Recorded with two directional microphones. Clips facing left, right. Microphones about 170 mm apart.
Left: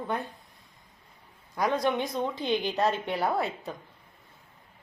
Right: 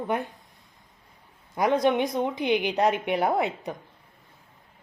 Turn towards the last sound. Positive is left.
turn(degrees=-20)  # may be behind; listen again after turning